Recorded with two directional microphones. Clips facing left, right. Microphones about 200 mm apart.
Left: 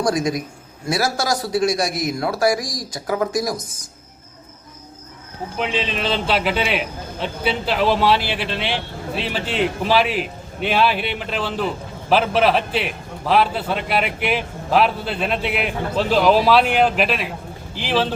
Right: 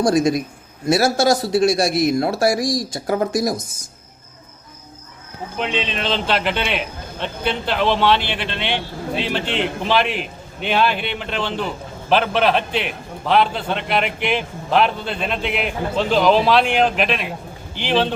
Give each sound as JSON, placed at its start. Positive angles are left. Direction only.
{"t": 0.0, "sound": "a man's voice", "side_deg": -25}
{"t": 5.5, "sound": "a man's voice", "side_deg": 5}